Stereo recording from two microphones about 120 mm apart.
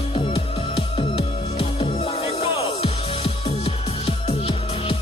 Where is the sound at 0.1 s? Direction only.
50° left (ahead or behind).